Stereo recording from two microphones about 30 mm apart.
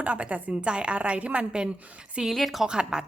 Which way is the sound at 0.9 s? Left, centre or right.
Right.